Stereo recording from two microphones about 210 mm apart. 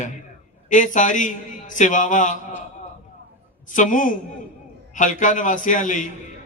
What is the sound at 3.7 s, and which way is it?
A man's voice, 40° left (ahead or behind).